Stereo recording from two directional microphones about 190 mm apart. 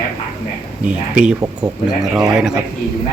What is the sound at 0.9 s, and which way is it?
Speech, 5° right (ahead or behind).